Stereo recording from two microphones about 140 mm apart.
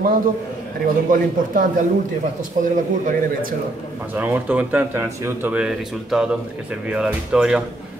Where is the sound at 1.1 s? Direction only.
75° right (ahead or behind).